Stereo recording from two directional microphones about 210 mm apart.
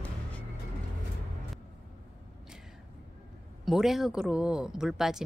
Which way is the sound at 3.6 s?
Centre (ahead or behind).